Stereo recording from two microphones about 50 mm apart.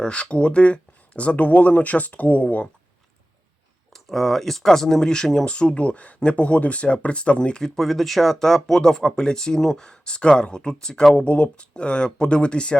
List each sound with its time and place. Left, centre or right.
0.0 s speech: centre
3.9 s speech: centre; by 7.6 s left
7.6 s speech: centre